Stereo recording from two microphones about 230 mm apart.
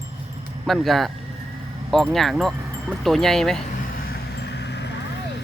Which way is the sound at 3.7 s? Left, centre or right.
Left.